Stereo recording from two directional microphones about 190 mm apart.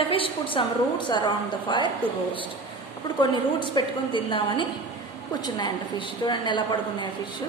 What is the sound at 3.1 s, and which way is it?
A woman's voice, 25° left (ahead or behind).